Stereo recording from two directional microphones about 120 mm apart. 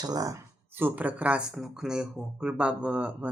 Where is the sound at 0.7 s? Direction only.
15° right (ahead or behind).